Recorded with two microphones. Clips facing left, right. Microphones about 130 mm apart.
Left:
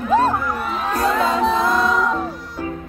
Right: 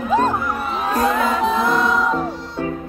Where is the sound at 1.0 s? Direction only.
Centre (ahead or behind).